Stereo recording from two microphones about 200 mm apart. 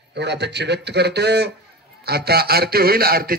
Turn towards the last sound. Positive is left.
turn(degrees=-50)  # may be behind; listen again after turning